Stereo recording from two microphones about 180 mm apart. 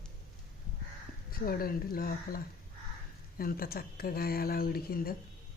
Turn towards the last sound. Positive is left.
turn(degrees=55)  # may be behind; listen again after turning